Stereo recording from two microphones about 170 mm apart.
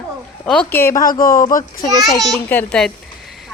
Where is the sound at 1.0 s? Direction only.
55° left (ahead or behind).